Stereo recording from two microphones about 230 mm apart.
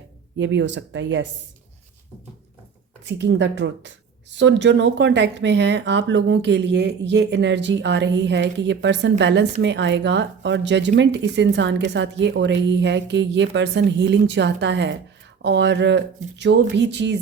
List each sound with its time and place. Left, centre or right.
0.3 s speech: right
3.0 s speech: right